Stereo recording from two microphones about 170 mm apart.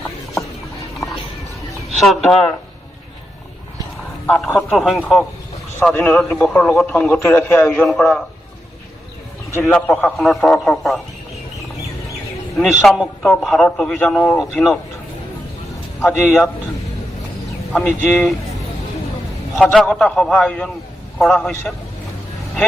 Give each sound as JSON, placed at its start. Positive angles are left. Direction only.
{"t": 2.0, "sound": "a man's voice", "side_deg": 0}
{"t": 4.3, "sound": "speech", "side_deg": 10}
{"t": 4.5, "sound": "a man's voice", "side_deg": 0}
{"t": 9.5, "sound": "a man's voice", "side_deg": 15}
{"t": 12.8, "sound": "a man's voice", "side_deg": 0}
{"t": 16.0, "sound": "a man's voice", "side_deg": 15}
{"t": 17.7, "sound": "speech", "side_deg": 10}
{"t": 19.5, "sound": "a man's voice", "side_deg": 0}